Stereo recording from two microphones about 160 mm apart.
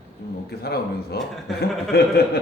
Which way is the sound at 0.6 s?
80° left.